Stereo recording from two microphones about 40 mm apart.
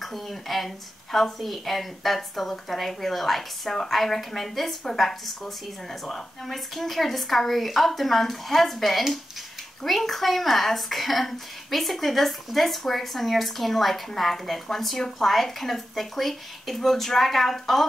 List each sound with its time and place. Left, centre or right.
0.0 s a woman's voice: centre